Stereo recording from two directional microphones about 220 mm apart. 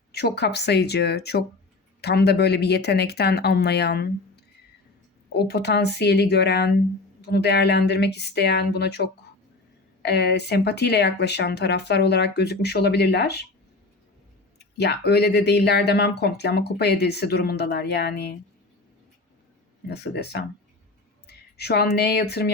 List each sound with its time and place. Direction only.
0.1 s speech: 45° left (ahead or behind)
5.3 s speech: 50° left (ahead or behind)
14.6 s speech: 50° left (ahead or behind)
19.9 s speech: 50° left (ahead or behind)